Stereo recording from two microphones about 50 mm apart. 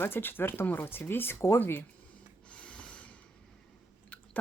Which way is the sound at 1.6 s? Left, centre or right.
Left.